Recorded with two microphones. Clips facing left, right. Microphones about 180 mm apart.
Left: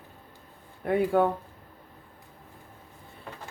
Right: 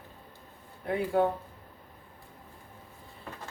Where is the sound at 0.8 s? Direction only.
55° left (ahead or behind).